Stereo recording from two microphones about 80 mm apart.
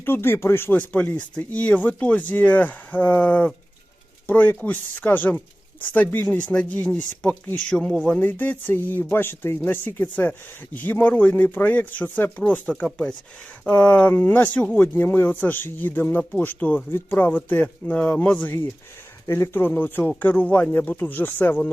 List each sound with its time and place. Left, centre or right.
0.0 s speech: left
19.2 s speech: left
19.6 s speech: left